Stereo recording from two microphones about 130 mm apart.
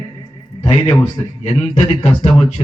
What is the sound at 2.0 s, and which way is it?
Speech, 45° left (ahead or behind).